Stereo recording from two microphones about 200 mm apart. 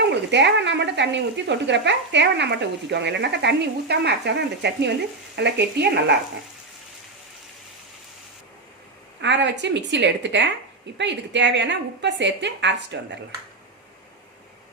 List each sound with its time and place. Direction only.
0.3 s speech: 60° right (ahead or behind)
9.2 s speech: 60° right (ahead or behind)